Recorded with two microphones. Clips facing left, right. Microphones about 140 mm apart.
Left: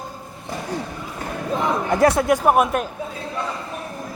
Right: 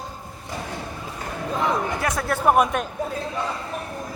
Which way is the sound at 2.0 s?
30° left (ahead or behind).